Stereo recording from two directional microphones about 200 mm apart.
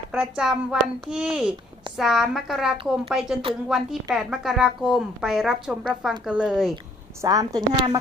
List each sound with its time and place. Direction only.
0.1 s a woman's voice: 5° right (ahead or behind)
7.2 s a woman's voice: 20° right (ahead or behind)